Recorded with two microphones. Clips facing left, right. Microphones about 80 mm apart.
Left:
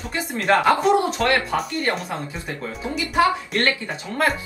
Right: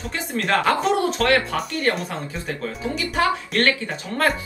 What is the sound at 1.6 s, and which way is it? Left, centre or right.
Speech, centre.